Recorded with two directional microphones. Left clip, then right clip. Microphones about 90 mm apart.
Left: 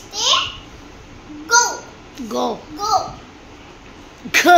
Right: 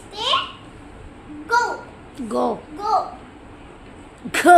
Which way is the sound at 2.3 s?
15° right (ahead or behind).